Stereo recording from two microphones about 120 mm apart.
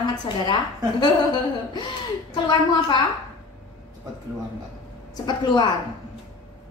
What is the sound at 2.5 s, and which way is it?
Speech, 40° left (ahead or behind).